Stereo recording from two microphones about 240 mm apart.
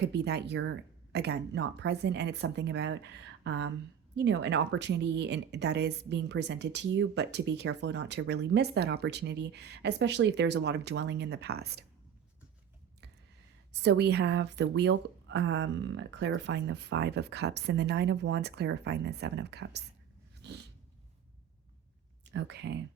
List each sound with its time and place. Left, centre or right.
0.0 s speech: right
13.7 s speech: right
22.2 s speech: right